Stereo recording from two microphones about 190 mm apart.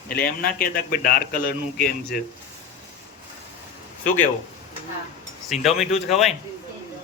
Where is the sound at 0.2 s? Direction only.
50° left (ahead or behind).